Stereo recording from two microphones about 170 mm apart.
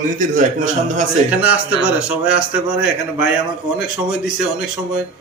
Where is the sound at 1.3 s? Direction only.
10° right (ahead or behind).